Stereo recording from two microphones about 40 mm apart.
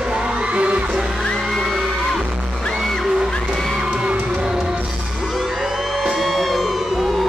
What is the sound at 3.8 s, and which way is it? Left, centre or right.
Music, centre.